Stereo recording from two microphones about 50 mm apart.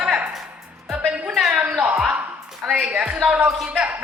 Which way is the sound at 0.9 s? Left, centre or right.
Centre.